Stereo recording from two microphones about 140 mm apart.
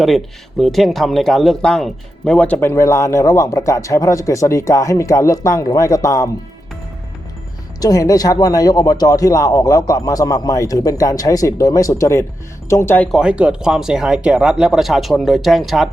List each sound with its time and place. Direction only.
0.6 s speech: centre (ahead or behind); by 6.3 s 25° left (ahead or behind)
7.8 s speech: 25° left (ahead or behind)
13.1 s speech: 5° right (ahead or behind)